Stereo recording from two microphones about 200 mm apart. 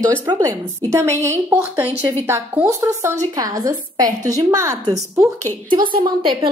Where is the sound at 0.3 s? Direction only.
15° right (ahead or behind).